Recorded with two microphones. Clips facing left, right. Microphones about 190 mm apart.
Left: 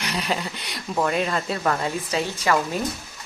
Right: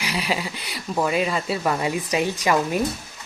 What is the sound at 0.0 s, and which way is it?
Speech, 5° right (ahead or behind).